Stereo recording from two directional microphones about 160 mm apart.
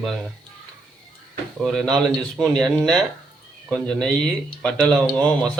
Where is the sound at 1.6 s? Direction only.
Centre (ahead or behind).